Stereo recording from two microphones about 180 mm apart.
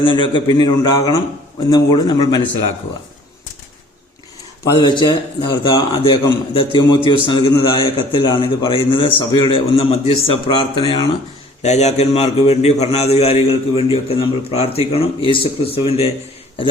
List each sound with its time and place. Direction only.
0.0 s a man's voice: 30° left (ahead or behind)
4.7 s a man's voice: 25° left (ahead or behind)
11.6 s a man's voice: 40° left (ahead or behind)